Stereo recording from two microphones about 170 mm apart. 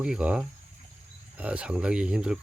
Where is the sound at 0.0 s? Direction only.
5° right (ahead or behind).